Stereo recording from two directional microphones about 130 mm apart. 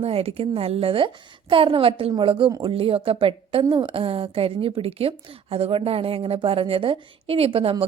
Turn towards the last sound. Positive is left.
turn(degrees=-45)  # may be behind; listen again after turning